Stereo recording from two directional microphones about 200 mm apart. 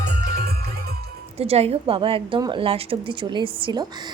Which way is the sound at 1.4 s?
30° right (ahead or behind).